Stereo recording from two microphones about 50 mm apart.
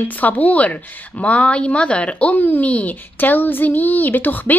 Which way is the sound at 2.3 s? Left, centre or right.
Left.